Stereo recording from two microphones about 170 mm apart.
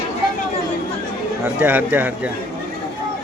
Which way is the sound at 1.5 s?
10° right (ahead or behind).